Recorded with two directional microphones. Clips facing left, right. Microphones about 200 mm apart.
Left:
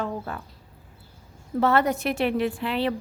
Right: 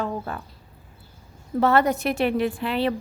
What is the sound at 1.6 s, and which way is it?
A woman's voice, 40° right (ahead or behind).